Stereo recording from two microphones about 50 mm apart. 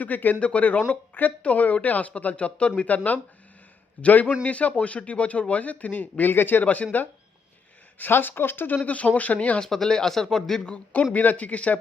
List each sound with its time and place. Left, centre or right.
0.0 s speech: left
8.8 s speech: left
9.6 s speech: centre
11.1 s speech: left